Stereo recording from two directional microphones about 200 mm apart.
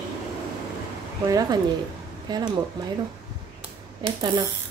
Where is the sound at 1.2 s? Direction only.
20° right (ahead or behind).